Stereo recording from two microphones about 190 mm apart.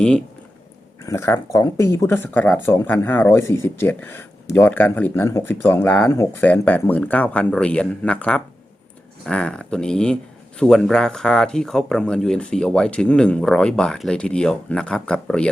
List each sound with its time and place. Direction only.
1.0 s speech: 15° left (ahead or behind)